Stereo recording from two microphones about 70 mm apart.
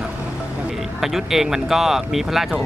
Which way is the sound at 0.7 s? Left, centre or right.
Centre.